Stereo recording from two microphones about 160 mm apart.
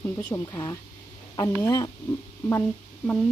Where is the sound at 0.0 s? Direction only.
20° left (ahead or behind).